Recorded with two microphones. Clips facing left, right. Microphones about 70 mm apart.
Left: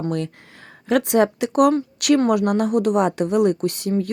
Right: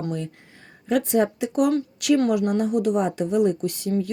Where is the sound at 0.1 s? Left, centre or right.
Left.